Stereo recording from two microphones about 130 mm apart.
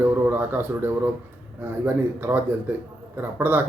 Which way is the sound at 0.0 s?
15° right (ahead or behind).